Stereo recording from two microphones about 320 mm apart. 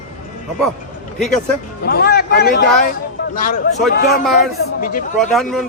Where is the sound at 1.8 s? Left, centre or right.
Left.